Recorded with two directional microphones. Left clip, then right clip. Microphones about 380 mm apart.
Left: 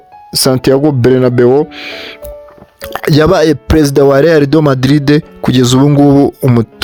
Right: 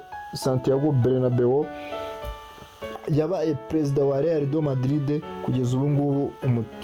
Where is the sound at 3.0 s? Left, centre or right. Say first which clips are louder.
Left 17 dB; left.